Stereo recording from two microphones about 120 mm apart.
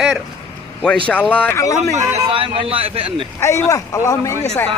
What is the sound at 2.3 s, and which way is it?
Speech, 50° right (ahead or behind).